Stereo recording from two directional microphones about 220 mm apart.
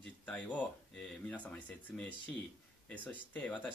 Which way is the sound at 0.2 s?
5° left (ahead or behind).